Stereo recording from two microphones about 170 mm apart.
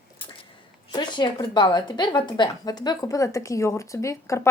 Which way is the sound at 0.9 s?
25° left (ahead or behind).